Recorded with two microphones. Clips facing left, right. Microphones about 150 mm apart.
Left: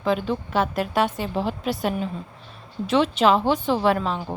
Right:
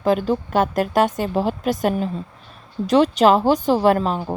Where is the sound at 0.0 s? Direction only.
45° right (ahead or behind).